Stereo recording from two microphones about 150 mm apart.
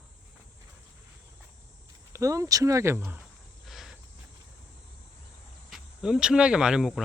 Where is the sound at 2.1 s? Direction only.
20° right (ahead or behind).